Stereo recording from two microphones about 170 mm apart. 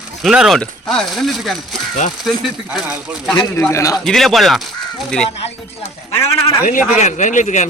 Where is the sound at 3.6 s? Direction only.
15° left (ahead or behind).